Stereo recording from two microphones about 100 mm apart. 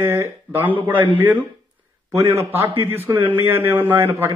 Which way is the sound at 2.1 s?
25° right (ahead or behind).